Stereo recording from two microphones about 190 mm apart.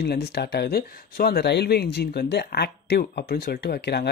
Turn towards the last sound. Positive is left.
turn(degrees=60)  # may be behind; listen again after turning